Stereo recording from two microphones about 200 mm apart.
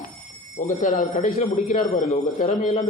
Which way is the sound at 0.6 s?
40° left (ahead or behind).